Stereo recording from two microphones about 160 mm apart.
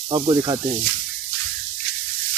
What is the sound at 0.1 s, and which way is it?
Speech, 30° right (ahead or behind).